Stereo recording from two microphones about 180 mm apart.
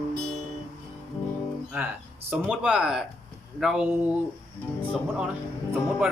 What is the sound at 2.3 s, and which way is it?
A man's voice, 5° right (ahead or behind).